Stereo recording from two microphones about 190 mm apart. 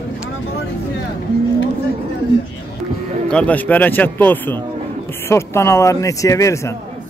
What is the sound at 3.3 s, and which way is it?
A man's voice, 5° left (ahead or behind).